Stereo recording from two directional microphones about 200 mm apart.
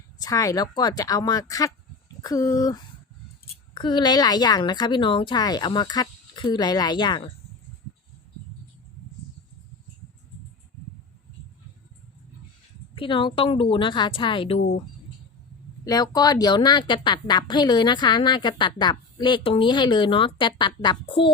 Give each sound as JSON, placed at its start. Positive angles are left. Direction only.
{"t": 0.2, "sound": "a woman's voice", "side_deg": 15}
{"t": 3.8, "sound": "a woman's voice", "side_deg": 20}
{"t": 13.0, "sound": "a woman's voice", "side_deg": 25}
{"t": 15.8, "sound": "a woman's voice", "side_deg": 20}